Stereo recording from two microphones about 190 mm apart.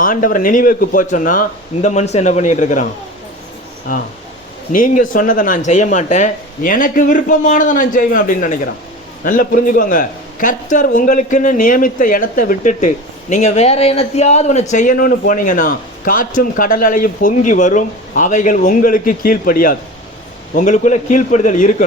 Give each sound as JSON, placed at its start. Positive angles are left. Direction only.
{"t": 0.0, "sound": "a man's voice", "side_deg": 45}
{"t": 4.7, "sound": "a man's voice", "side_deg": 45}